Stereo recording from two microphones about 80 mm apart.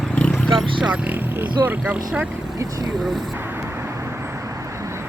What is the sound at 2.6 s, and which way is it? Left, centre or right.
Speech, right.